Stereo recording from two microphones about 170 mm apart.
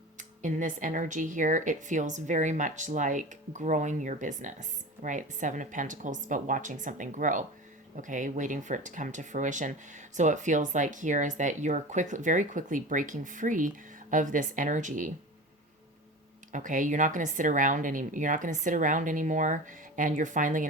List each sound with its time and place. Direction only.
0.2 s speech: 50° right (ahead or behind)
16.5 s speech: 50° right (ahead or behind)